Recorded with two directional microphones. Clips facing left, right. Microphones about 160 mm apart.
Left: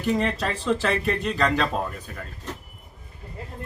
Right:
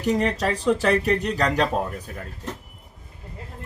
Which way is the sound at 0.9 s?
40° right (ahead or behind).